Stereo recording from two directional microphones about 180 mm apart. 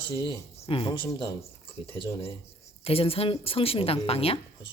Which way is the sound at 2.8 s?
30° left (ahead or behind).